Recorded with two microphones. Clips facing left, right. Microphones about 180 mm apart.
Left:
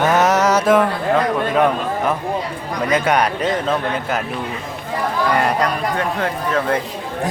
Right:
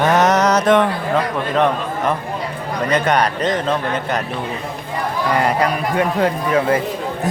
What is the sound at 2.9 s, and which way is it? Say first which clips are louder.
A man's voice: even; 5° left (ahead or behind).